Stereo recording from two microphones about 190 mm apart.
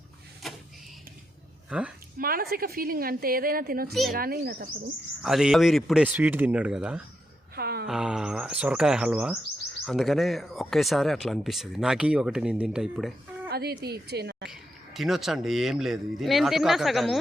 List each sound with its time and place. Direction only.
1.7 s speech: 5° right (ahead or behind)
2.1 s a woman's voice: 50° right (ahead or behind)
5.2 s speech: centre (ahead or behind)
7.5 s a sound: 55° right (ahead or behind)
7.9 s speech: 5° right (ahead or behind)
13.5 s a woman's voice: 55° right (ahead or behind)
14.5 s speech: centre (ahead or behind)